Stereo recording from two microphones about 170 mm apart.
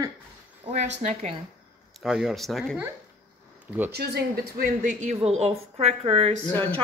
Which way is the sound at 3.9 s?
70° right (ahead or behind).